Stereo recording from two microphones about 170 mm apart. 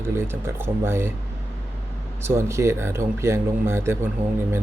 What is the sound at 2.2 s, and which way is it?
Speech, 15° right (ahead or behind).